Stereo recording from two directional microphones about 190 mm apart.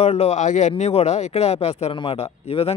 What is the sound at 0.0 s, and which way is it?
Speech, 35° left (ahead or behind).